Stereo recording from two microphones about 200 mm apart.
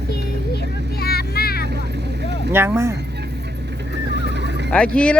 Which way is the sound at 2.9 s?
55° right (ahead or behind).